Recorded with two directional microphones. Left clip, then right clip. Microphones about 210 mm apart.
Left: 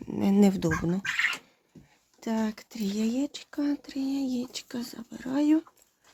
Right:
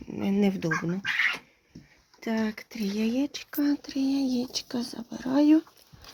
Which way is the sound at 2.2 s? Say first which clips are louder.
Right 1 dB; 5° left (ahead or behind).